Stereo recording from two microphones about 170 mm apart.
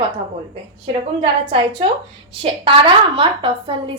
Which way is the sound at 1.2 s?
30° right (ahead or behind).